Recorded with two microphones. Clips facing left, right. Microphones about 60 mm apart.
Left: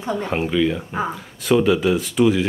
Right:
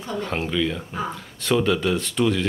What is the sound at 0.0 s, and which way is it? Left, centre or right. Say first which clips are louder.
Speech: left 4 dB; left.